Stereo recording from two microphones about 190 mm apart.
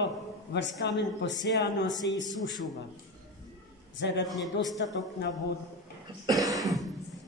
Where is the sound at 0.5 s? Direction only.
65° left (ahead or behind).